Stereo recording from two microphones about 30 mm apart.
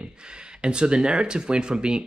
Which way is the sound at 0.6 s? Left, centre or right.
Right.